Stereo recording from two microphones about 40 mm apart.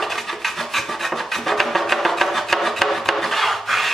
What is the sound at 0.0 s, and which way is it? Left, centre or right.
Filing, centre.